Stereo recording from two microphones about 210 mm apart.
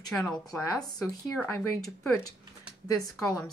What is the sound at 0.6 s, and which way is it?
A woman's voice, 15° left (ahead or behind).